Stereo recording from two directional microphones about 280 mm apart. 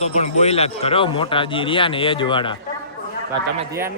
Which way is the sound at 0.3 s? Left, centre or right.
Left.